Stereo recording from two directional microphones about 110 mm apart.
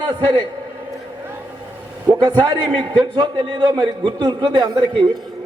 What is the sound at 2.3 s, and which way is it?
A man's voice, 40° right (ahead or behind).